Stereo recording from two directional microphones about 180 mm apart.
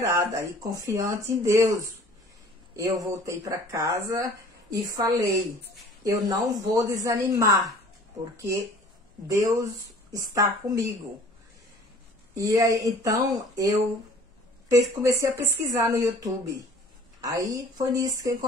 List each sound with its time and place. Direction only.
0.0 s speech: 15° right (ahead or behind)
9.3 s speech: 20° right (ahead or behind)
12.4 s speech: 20° right (ahead or behind)